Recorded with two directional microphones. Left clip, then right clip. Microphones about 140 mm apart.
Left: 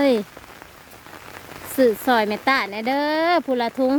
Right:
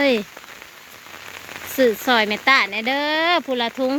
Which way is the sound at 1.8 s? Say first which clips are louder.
Right 1 dB; 25° left (ahead or behind).